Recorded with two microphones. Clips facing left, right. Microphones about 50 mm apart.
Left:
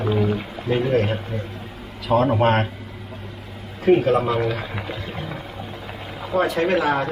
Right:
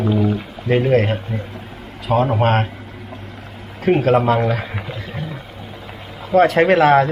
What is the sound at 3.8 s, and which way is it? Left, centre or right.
Speech, right.